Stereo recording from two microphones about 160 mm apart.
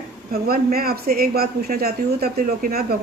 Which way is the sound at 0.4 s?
70° right (ahead or behind).